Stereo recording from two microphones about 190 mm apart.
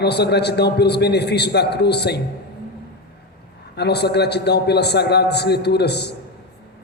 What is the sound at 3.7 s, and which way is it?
A man's voice, 60° left (ahead or behind).